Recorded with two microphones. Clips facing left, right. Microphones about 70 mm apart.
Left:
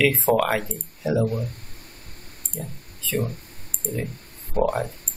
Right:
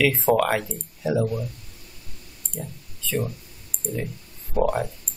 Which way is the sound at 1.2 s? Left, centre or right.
Left.